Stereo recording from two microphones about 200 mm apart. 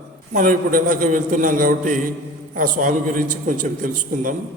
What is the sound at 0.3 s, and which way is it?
A man's voice, 40° right (ahead or behind).